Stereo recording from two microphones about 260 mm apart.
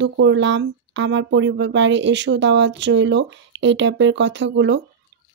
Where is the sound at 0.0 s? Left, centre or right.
Right.